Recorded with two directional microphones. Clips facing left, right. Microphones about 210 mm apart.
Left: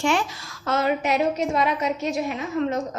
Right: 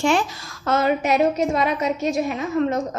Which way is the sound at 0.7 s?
50° right (ahead or behind).